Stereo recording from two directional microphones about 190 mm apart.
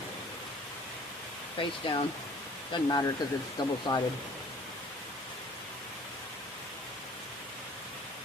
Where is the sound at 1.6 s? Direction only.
25° left (ahead or behind).